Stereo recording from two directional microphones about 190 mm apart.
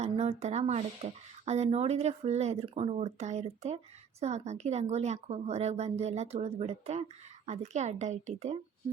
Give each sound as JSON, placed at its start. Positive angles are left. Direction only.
{"t": 0.0, "sound": "speech", "side_deg": -35}